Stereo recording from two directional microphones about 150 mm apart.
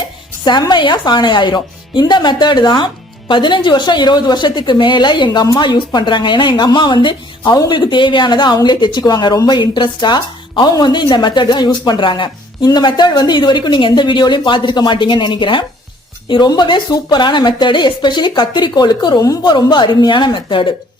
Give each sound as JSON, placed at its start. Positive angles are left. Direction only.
{"t": 0.4, "sound": "a woman's voice", "side_deg": 30}